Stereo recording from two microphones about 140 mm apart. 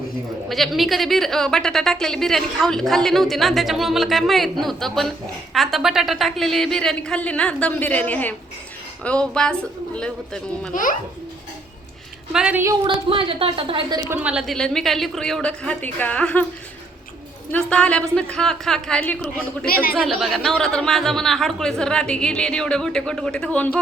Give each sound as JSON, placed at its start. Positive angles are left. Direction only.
{"t": 0.4, "sound": "a woman's voice", "side_deg": 0}
{"t": 12.3, "sound": "a woman's voice", "side_deg": -10}
{"t": 12.9, "sound": "a woman's voice", "side_deg": -40}
{"t": 14.1, "sound": "a woman's voice", "side_deg": -10}
{"t": 17.5, "sound": "a woman's voice", "side_deg": 10}
{"t": 19.6, "sound": "a woman's voice", "side_deg": 90}
{"t": 20.1, "sound": "a woman's voice", "side_deg": 0}